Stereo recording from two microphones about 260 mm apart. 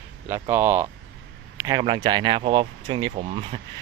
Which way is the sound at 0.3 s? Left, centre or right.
Centre.